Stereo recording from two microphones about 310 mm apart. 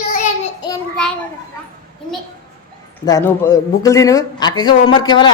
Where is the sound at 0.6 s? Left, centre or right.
Centre.